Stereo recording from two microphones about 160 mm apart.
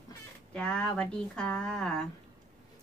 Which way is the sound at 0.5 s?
5° left (ahead or behind).